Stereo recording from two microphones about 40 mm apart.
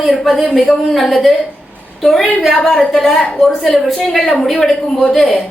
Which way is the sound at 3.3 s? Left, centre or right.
Centre.